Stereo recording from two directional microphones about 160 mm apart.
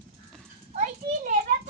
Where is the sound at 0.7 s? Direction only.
55° right (ahead or behind).